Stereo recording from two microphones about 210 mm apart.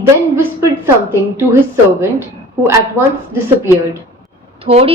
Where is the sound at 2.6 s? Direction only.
10° right (ahead or behind).